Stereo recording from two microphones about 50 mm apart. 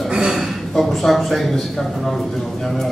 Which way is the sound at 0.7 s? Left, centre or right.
Centre.